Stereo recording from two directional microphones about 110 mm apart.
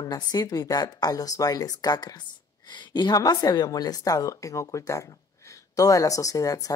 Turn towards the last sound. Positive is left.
turn(degrees=30)  # may be behind; listen again after turning